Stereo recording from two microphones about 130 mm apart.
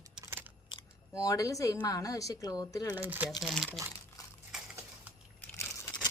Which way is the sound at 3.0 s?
15° right (ahead or behind).